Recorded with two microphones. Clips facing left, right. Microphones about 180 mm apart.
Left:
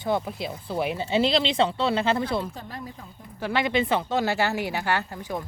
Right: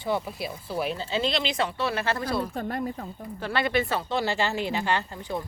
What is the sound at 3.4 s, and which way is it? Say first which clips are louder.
Speech: left 2 dB; 15° left (ahead or behind).